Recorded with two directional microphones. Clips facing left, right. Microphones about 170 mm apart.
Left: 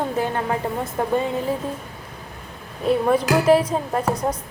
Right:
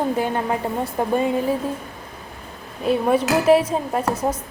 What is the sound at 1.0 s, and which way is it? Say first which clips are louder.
Speech: right 1 dB; 20° right (ahead or behind).